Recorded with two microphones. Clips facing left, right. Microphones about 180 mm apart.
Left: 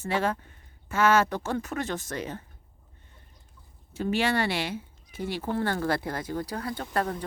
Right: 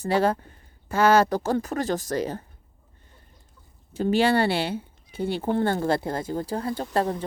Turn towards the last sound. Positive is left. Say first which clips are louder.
# right 4 dB
turn(degrees=-25)  # may be behind; listen again after turning